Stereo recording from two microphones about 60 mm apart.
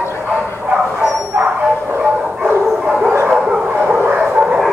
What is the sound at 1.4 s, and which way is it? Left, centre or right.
Bow-wow, right.